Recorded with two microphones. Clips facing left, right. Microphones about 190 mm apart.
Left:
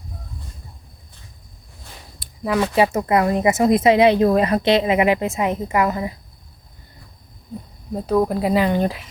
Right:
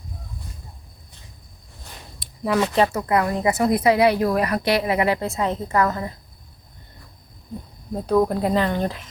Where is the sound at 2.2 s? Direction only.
5° left (ahead or behind).